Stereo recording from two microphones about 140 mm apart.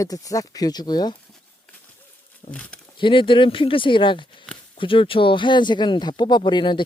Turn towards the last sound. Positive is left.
turn(degrees=35)  # may be behind; listen again after turning